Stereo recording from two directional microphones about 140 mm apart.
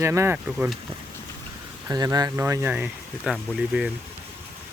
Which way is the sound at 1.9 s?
30° right (ahead or behind).